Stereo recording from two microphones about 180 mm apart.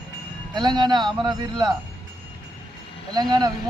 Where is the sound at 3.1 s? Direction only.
25° right (ahead or behind).